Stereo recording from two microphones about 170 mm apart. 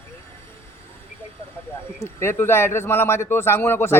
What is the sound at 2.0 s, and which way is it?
Speech, 15° left (ahead or behind).